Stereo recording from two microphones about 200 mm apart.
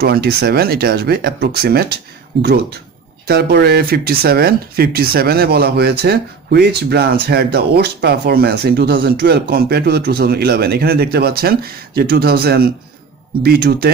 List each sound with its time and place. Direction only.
0.0 s speech: 50° right (ahead or behind)